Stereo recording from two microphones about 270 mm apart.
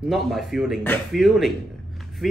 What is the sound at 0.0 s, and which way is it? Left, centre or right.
Speech, centre.